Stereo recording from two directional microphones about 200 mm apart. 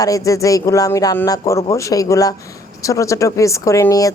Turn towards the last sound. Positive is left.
turn(degrees=15)  # may be behind; listen again after turning